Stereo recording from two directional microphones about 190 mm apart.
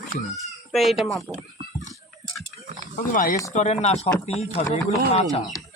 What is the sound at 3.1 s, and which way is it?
Speech, 50° left (ahead or behind).